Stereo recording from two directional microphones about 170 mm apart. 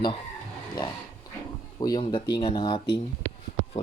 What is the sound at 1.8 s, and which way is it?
Speech, 25° left (ahead or behind).